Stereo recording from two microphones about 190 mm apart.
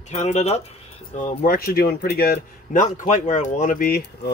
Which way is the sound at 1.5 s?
55° left (ahead or behind).